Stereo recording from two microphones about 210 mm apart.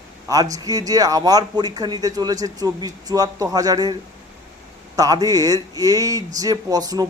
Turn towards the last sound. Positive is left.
turn(degrees=-20)  # may be behind; listen again after turning